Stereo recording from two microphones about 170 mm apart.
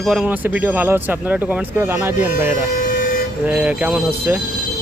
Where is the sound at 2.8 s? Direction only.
55° left (ahead or behind).